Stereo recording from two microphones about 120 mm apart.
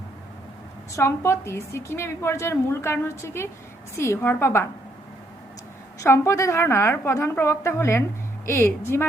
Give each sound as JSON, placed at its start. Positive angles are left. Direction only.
{"t": 0.9, "sound": "a woman's voice", "side_deg": 20}
{"t": 6.0, "sound": "a woman's voice", "side_deg": 25}